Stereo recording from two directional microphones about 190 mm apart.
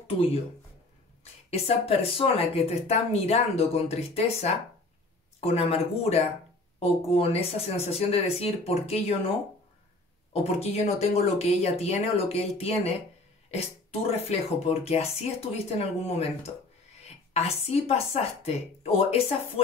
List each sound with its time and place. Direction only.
0.0 s speech: 30° left (ahead or behind)
10.3 s speech: 30° left (ahead or behind)
14.1 s speech: 35° left (ahead or behind)